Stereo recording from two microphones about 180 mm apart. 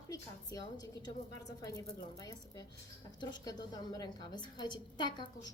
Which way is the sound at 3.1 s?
20° left (ahead or behind).